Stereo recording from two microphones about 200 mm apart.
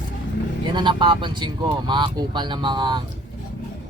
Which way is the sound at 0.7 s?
25° right (ahead or behind).